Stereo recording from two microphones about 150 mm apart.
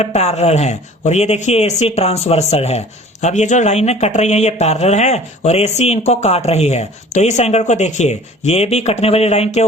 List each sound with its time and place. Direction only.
0.0 s speech: 45° left (ahead or behind)